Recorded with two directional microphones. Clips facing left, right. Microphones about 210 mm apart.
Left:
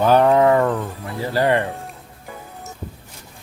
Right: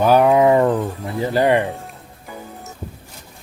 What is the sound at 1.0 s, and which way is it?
Speech, 20° right (ahead or behind).